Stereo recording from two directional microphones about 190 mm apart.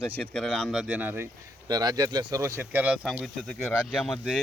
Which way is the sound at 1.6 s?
20° right (ahead or behind).